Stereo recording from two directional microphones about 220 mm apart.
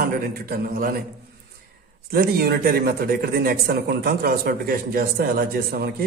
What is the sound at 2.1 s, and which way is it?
A man's voice, 45° right (ahead or behind).